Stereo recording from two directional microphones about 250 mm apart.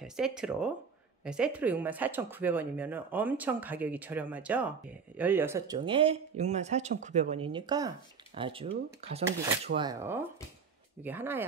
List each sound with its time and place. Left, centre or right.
0.0 s speech: centre